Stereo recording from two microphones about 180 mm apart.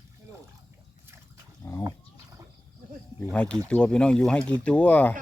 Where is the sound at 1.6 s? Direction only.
15° left (ahead or behind).